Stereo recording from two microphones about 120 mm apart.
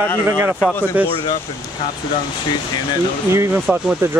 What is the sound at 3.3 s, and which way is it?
Speech, 25° right (ahead or behind).